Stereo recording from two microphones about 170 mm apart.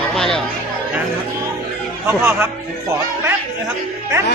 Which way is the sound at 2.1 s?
15° right (ahead or behind).